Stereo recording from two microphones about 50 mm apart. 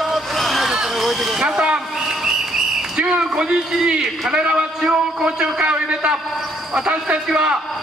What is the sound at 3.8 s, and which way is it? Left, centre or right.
A man's voice, centre.